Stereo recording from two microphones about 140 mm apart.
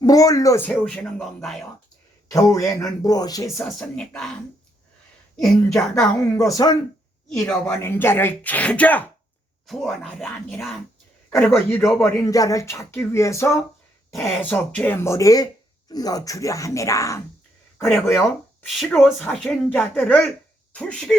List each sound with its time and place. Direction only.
0.0 s speech: 25° left (ahead or behind)
0.6 s speech: 10° left (ahead or behind)
2.3 s speech: 25° left (ahead or behind)
3.7 s speech: 5° left (ahead or behind)
5.4 s speech: 5° left (ahead or behind)
6.3 s speech: 25° left (ahead or behind); by 10.8 s centre (ahead or behind)
11.3 s speech: 15° left (ahead or behind)
14.1 s speech: 5° left (ahead or behind); by 17.2 s 20° left (ahead or behind)
18.8 s speech: centre (ahead or behind)